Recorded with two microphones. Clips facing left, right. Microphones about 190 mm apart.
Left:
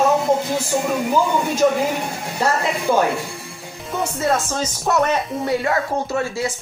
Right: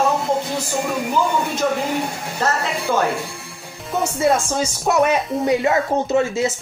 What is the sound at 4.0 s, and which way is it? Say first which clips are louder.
Speech: right 3 dB; 10° right (ahead or behind).